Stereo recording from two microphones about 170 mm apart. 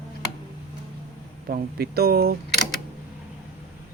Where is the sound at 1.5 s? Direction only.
65° right (ahead or behind).